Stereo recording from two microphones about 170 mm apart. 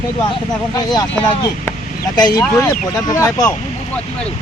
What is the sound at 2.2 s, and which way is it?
Speech, 25° left (ahead or behind).